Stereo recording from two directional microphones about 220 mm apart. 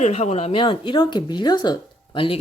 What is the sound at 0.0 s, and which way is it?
Speech, 30° left (ahead or behind).